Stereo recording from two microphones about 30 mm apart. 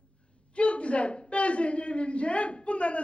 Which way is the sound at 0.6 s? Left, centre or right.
Left.